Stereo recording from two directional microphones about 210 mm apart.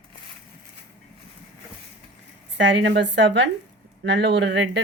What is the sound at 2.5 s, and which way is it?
A woman's voice, 60° right (ahead or behind).